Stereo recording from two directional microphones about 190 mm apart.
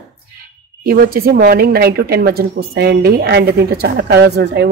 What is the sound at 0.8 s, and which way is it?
Speech, 50° right (ahead or behind).